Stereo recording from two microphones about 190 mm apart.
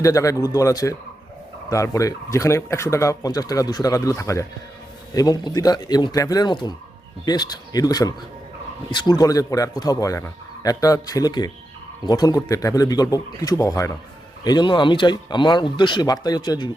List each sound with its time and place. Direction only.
0.0 s a man's voice: 15° left (ahead or behind)